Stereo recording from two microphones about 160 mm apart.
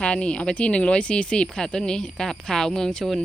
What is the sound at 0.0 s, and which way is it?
Speech, 5° left (ahead or behind).